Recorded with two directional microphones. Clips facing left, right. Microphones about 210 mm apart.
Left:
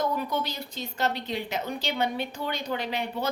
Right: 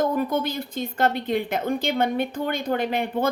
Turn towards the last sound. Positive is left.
turn(degrees=-50)  # may be behind; listen again after turning